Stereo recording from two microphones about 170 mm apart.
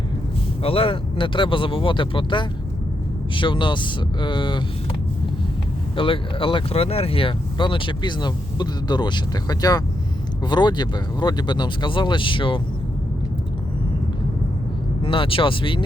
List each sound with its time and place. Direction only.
0.6 s speech: 35° left (ahead or behind)
6.0 s speech: 30° left (ahead or behind)
15.0 s speech: 30° left (ahead or behind)